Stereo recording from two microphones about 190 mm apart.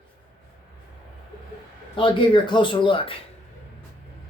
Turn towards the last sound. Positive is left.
turn(degrees=30)  # may be behind; listen again after turning